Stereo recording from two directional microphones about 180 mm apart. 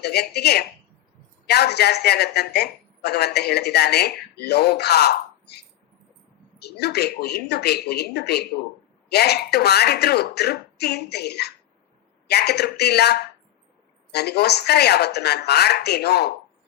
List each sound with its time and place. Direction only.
0.0 s a woman's voice: 65° left (ahead or behind)
6.6 s a woman's voice: 65° left (ahead or behind)